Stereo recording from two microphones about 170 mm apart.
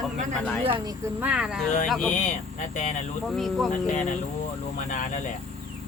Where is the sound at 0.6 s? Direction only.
30° right (ahead or behind).